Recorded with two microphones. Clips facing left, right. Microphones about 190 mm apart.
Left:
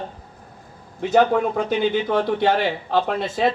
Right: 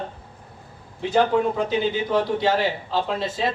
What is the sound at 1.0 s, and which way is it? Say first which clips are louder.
A man's voice: left 2 dB; 50° left (ahead or behind).